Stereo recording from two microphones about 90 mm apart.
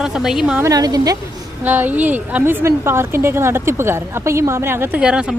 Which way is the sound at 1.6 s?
20° right (ahead or behind).